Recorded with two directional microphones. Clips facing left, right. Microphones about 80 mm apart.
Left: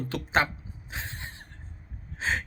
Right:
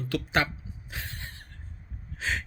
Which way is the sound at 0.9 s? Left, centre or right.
Left.